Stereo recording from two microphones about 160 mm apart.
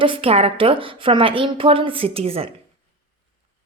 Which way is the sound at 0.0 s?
35° right (ahead or behind).